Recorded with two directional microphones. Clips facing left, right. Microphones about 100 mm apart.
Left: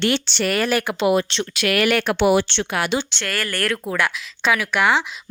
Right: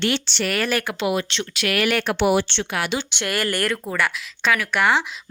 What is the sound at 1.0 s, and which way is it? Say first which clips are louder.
Speech: left 7 dB; 40° left (ahead or behind).